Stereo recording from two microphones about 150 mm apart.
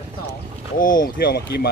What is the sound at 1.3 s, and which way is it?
Speech, 90° left.